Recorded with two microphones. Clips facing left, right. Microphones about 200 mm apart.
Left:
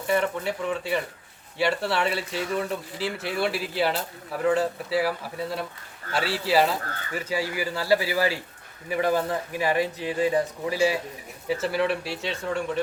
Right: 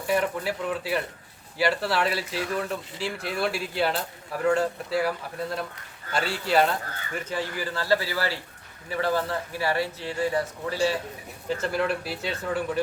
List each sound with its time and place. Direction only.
0.1 s speech: centre (ahead or behind)